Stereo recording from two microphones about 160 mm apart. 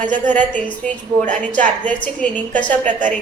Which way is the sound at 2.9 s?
50° right (ahead or behind).